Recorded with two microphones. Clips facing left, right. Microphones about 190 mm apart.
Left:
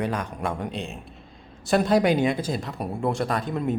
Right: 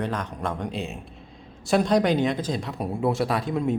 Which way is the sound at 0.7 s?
Centre (ahead or behind).